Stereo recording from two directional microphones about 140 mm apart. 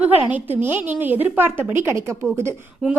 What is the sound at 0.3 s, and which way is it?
A woman's voice, 15° right (ahead or behind).